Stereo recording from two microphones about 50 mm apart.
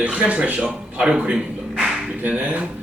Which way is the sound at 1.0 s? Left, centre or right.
Centre.